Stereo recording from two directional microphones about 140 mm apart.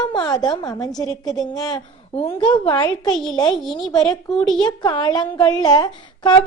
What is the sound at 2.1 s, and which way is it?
Speech, 40° left (ahead or behind).